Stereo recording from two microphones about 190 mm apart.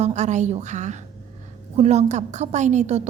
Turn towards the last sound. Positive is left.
turn(degrees=-35)  # may be behind; listen again after turning